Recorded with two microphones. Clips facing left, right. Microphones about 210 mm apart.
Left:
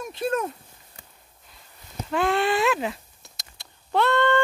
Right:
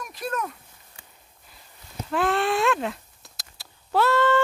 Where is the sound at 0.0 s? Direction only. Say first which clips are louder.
Left 5 dB; 25° left (ahead or behind).